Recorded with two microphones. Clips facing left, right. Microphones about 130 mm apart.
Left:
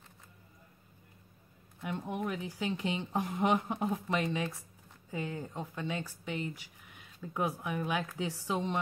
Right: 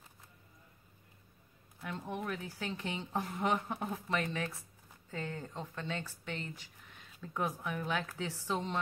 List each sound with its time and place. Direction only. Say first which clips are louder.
1.8 s speech: left 4 dB; 15° left (ahead or behind)